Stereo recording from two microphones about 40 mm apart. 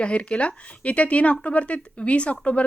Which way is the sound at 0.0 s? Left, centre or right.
Left.